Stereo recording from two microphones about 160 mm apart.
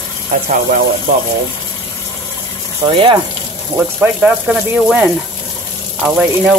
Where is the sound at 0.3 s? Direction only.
50° right (ahead or behind).